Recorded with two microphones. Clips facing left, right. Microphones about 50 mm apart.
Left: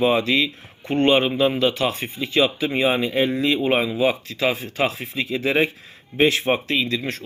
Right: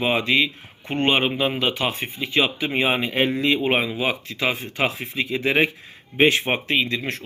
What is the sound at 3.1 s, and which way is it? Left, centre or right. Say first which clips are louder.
Speech: even; right.